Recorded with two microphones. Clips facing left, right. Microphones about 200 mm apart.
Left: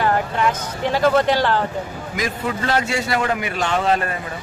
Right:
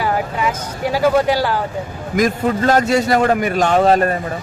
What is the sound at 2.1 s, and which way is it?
A man's voice, 45° right (ahead or behind).